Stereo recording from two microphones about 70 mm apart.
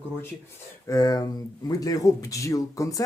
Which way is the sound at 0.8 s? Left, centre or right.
Left.